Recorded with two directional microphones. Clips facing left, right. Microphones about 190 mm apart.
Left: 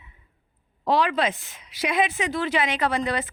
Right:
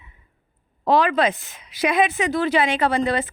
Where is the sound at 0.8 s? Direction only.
50° right (ahead or behind); by 3.3 s 25° right (ahead or behind).